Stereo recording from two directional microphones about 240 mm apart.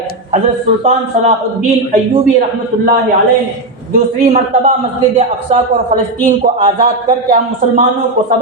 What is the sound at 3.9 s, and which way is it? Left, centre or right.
A man's voice, right.